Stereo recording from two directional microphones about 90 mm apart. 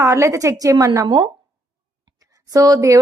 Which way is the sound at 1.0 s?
65° right (ahead or behind).